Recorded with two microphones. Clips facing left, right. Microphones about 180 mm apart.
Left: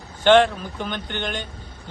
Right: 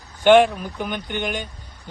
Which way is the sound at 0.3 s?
10° right (ahead or behind).